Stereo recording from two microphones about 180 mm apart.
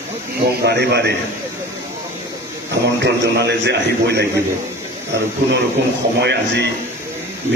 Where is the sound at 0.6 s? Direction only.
65° right (ahead or behind).